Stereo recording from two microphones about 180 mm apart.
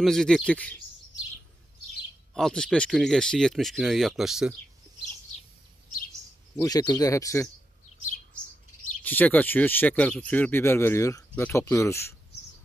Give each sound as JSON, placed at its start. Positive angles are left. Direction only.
{"t": 0.0, "sound": "speech", "side_deg": 5}
{"t": 2.3, "sound": "speech", "side_deg": 5}
{"t": 6.5, "sound": "speech", "side_deg": 20}
{"t": 9.0, "sound": "speech", "side_deg": 10}